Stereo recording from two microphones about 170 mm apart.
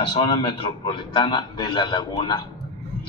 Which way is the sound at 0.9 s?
30° left (ahead or behind).